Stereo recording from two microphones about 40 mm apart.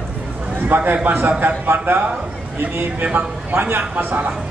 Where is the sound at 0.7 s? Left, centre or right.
Right.